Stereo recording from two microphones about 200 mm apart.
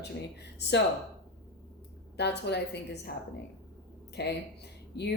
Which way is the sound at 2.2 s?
55° left (ahead or behind).